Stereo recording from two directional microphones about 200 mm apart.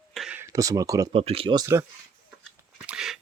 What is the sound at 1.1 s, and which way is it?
Speech, 30° right (ahead or behind).